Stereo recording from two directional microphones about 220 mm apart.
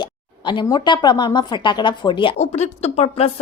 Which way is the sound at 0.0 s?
20° left (ahead or behind).